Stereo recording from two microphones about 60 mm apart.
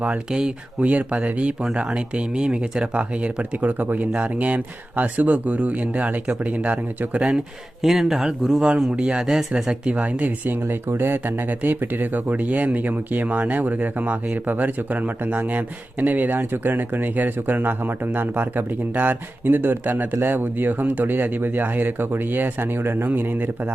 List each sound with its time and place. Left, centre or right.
0.3 s speech: centre
0.8 s speech: right
7.8 s speech: centre
9.9 s speech: right
10.7 s speech: right